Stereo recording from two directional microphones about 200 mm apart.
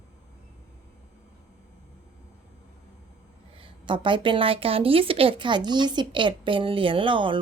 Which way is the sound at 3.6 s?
25° right (ahead or behind).